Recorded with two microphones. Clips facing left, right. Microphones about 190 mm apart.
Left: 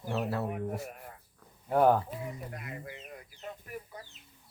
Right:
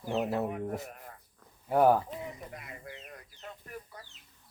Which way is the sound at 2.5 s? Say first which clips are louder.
Left 3 dB; 5° left (ahead or behind).